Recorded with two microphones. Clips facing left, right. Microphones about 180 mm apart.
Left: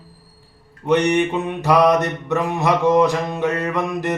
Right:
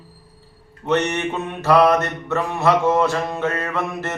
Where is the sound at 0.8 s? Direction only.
15° left (ahead or behind).